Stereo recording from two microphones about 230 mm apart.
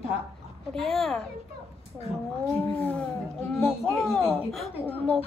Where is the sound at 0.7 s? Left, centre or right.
Centre.